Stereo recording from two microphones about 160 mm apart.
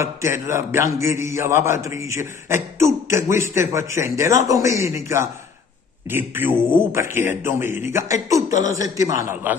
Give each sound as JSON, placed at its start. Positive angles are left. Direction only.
{"t": 0.0, "sound": "a man's voice", "side_deg": -15}